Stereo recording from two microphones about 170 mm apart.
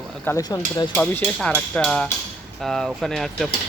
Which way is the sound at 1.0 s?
5° left (ahead or behind).